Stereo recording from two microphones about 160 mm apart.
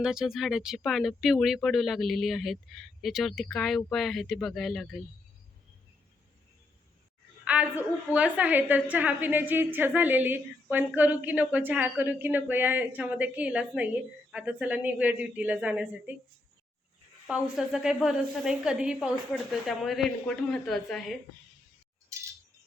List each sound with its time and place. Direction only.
0.0 s speech: 5° right (ahead or behind)
7.4 s a woman's voice: 10° right (ahead or behind)
17.2 s speech: 5° right (ahead or behind)
22.1 s wind chime: 20° right (ahead or behind)